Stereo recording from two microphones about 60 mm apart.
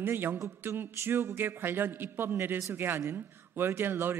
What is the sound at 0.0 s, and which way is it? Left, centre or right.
A man's voice, right.